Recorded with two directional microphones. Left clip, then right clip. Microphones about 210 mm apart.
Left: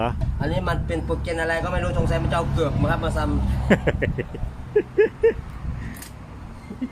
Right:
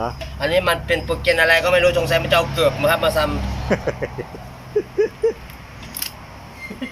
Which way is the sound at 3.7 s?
20° left (ahead or behind).